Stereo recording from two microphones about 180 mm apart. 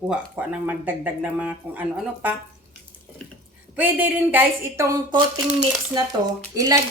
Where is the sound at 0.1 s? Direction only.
10° right (ahead or behind).